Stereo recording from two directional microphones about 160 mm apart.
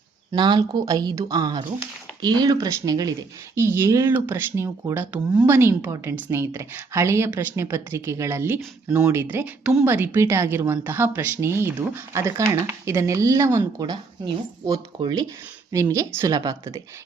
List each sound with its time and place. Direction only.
0.3 s a woman's voice: 30° right (ahead or behind)